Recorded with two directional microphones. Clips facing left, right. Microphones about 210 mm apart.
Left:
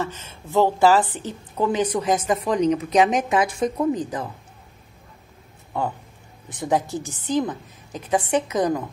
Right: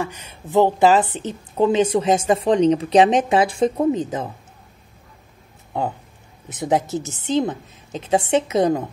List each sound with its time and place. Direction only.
0.0 s a woman's voice: 15° right (ahead or behind)
5.7 s a woman's voice: 20° right (ahead or behind)